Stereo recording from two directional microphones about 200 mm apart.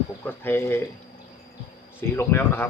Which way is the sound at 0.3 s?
10° left (ahead or behind).